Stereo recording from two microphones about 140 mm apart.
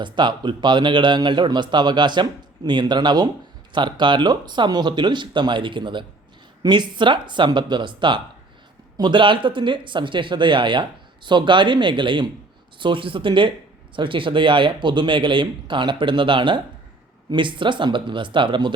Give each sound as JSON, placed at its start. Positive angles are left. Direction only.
{"t": 0.0, "sound": "speech", "side_deg": -35}